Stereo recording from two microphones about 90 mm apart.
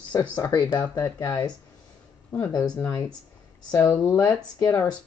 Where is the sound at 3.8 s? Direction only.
25° left (ahead or behind).